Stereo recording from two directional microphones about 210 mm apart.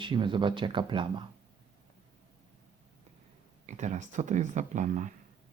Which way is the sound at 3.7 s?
35° right (ahead or behind).